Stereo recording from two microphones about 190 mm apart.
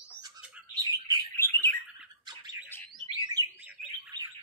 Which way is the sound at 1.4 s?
10° left (ahead or behind).